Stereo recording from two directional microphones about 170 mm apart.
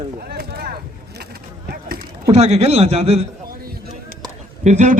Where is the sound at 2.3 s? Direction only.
40° right (ahead or behind).